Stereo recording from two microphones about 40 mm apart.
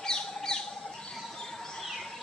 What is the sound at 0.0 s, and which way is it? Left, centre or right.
Bird, centre.